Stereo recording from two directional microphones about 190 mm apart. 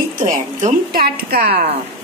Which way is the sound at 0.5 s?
45° right (ahead or behind).